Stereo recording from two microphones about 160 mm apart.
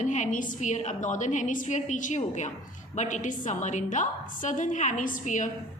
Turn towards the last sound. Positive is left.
turn(degrees=50)  # may be behind; listen again after turning